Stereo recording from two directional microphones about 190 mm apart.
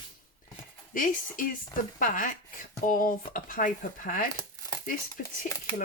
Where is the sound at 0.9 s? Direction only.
45° left (ahead or behind).